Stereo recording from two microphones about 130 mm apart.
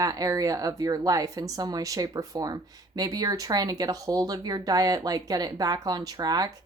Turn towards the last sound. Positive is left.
turn(degrees=-30)  # may be behind; listen again after turning